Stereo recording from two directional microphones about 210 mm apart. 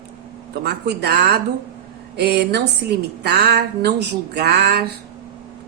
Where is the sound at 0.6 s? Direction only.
50° right (ahead or behind).